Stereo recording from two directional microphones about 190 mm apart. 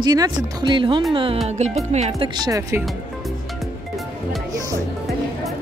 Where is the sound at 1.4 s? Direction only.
35° right (ahead or behind).